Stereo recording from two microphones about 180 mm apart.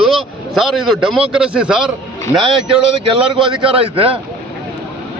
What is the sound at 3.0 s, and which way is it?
A man's voice, 30° right (ahead or behind).